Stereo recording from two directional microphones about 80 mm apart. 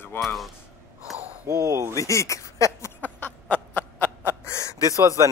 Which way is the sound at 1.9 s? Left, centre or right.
Left.